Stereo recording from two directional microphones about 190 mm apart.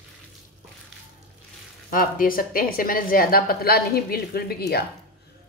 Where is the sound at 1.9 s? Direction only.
50° left (ahead or behind).